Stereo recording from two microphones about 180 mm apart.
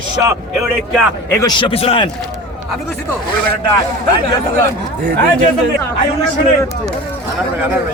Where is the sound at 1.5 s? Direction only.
30° left (ahead or behind).